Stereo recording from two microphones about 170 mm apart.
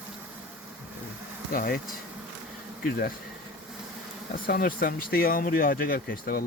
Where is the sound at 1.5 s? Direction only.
55° left (ahead or behind).